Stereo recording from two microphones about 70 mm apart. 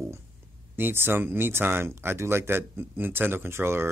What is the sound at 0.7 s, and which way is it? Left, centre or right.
A man's voice, right.